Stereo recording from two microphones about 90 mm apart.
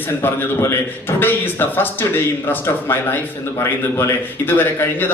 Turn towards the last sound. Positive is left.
turn(degrees=25)  # may be behind; listen again after turning